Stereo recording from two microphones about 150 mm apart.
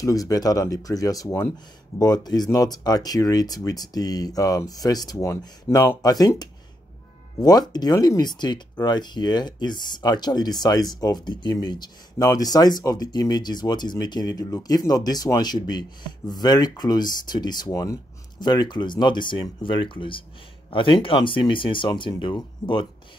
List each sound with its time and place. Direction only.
0.0 s speech: 25° left (ahead or behind)